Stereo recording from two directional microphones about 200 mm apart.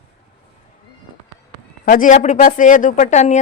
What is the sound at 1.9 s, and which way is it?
Speech, 40° left (ahead or behind).